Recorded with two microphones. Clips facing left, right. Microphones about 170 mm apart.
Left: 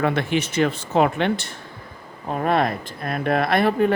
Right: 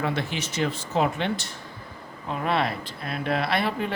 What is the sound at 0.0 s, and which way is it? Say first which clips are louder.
Speech: left 7 dB; 60° left (ahead or behind).